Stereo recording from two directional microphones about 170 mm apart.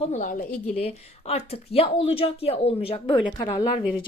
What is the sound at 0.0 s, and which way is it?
Speech, 45° left (ahead or behind).